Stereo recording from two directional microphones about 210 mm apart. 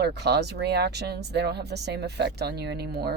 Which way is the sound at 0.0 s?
50° right (ahead or behind).